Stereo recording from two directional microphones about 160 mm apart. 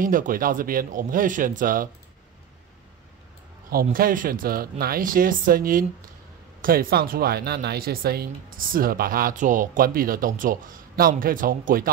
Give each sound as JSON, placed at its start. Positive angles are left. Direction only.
{"t": 0.0, "sound": "speech", "side_deg": -55}
{"t": 3.7, "sound": "speech", "side_deg": -65}